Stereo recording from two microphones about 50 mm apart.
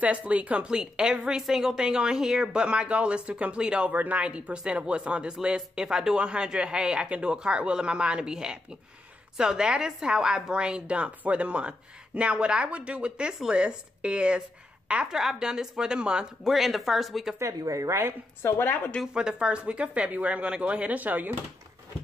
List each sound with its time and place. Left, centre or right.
0.0 s speech: right
3.9 s a woman's voice: right
4.2 s speech: right
16.4 s speech: centre
17.4 s speech: right
18.4 s a woman's voice: left
19.1 s speech: centre; by 21.4 s right